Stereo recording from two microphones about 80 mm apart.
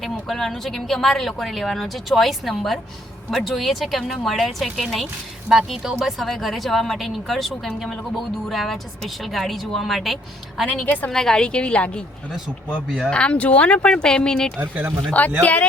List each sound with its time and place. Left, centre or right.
0.0 s speech: centre
10.7 s speech: centre
11.1 s speech: centre
13.1 s speech: centre
14.6 s speech: right
15.4 s speech: centre